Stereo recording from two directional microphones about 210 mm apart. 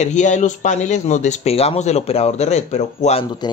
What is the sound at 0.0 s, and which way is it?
Speech, 35° left (ahead or behind).